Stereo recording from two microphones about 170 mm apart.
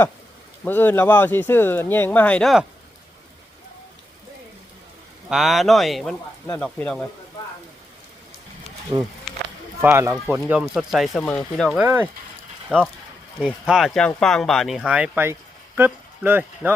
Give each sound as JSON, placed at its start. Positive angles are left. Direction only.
{"t": 0.6, "sound": "speech", "side_deg": 10}
{"t": 5.3, "sound": "speech", "side_deg": 0}
{"t": 8.9, "sound": "speech", "side_deg": -25}
{"t": 10.4, "sound": "speech", "side_deg": -5}
{"t": 12.7, "sound": "speech", "side_deg": -10}